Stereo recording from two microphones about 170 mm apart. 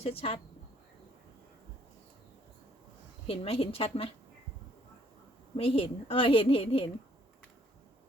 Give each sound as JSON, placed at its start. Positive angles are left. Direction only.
{"t": 0.0, "sound": "a woman's voice", "side_deg": 35}
{"t": 3.2, "sound": "a woman's voice", "side_deg": 35}
{"t": 5.5, "sound": "a woman's voice", "side_deg": 35}